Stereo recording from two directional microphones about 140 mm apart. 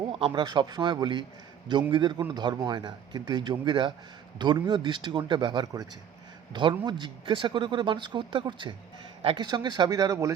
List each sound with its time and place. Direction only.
0.1 s speech: 40° right (ahead or behind)